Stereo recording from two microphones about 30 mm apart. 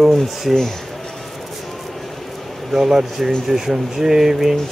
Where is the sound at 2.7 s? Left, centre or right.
Centre.